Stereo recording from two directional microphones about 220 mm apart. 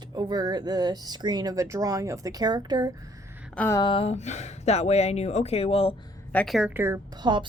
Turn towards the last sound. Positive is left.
turn(degrees=-20)  # may be behind; listen again after turning